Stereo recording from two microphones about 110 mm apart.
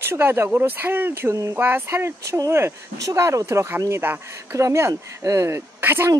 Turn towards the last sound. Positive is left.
turn(degrees=-20)  # may be behind; listen again after turning